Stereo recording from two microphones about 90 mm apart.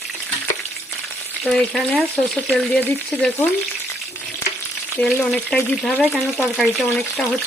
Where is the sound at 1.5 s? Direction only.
10° left (ahead or behind).